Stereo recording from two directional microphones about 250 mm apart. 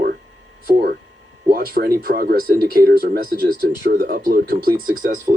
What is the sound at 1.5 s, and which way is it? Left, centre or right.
Speech, right.